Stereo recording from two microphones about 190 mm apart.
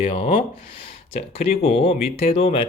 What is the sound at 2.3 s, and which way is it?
Speech, 30° left (ahead or behind).